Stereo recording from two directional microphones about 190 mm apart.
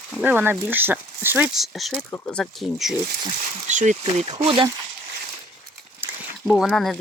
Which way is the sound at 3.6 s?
40° right (ahead or behind).